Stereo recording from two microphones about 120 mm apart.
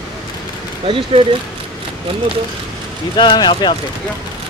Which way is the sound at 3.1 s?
40° left (ahead or behind).